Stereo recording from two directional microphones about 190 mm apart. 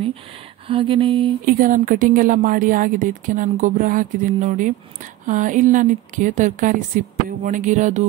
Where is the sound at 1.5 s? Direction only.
45° right (ahead or behind).